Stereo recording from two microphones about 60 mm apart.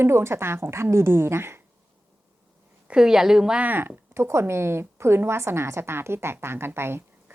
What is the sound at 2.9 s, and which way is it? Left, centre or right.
Speech, centre.